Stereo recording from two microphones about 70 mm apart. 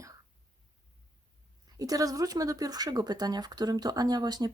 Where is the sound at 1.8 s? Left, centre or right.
Right.